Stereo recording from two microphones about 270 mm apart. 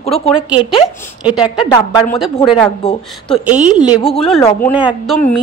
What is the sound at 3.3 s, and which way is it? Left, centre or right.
A woman's voice, centre.